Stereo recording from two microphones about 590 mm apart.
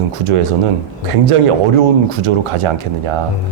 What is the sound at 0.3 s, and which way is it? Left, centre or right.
Speech, right.